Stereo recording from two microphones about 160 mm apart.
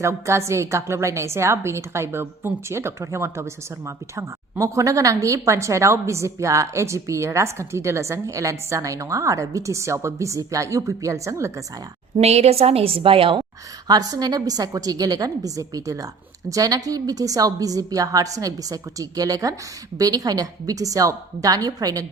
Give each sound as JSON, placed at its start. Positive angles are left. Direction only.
{"t": 0.0, "sound": "a woman's voice", "side_deg": -15}
{"t": 12.1, "sound": "a woman's voice", "side_deg": -40}